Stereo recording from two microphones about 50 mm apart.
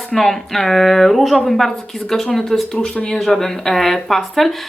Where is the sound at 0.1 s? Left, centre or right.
Centre.